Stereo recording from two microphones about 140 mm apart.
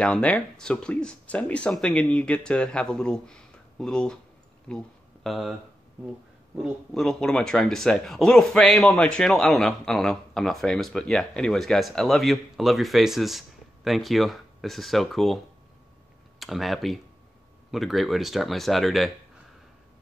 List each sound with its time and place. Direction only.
0.0 s speech: 5° left (ahead or behind)
4.6 s a sound: 5° left (ahead or behind)
6.5 s speech: centre (ahead or behind)